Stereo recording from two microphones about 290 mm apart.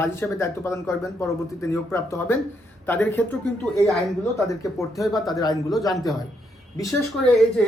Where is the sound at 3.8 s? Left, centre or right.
Centre.